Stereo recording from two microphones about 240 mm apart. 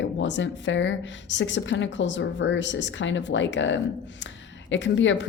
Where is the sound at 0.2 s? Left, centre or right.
Left.